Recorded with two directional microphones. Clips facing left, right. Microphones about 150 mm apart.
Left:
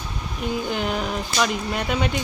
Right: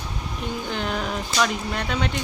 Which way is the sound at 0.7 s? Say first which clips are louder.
Left 2 dB; 5° left (ahead or behind).